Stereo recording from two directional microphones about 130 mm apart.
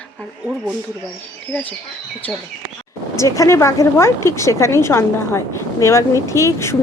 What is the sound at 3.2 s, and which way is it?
Speech, 25° left (ahead or behind).